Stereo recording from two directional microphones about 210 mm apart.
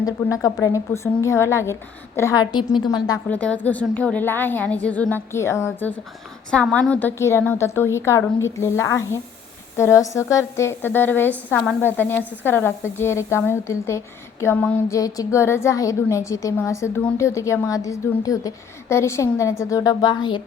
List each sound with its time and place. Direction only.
0.0 s a woman's voice: 15° left (ahead or behind)
3.2 s a woman's voice: 5° left (ahead or behind)